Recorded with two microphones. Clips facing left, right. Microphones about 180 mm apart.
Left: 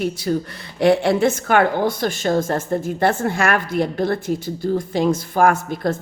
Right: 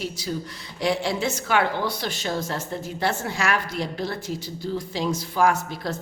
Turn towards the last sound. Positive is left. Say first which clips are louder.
# left 6 dB
turn(degrees=50)  # may be behind; listen again after turning